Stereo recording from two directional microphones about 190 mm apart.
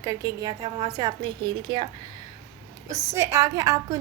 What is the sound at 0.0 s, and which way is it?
A woman's voice, 20° right (ahead or behind).